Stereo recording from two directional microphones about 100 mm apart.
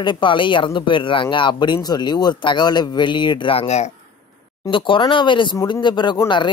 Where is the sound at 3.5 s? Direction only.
90° left.